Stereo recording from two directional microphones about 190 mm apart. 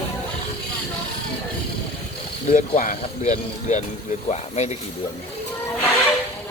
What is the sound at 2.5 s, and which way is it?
Speech, 45° left (ahead or behind).